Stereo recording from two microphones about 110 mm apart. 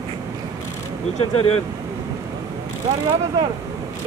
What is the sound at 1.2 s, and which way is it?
Speech, 60° left (ahead or behind).